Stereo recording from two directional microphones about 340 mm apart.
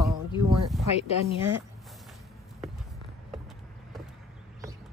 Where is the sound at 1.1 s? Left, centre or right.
Centre.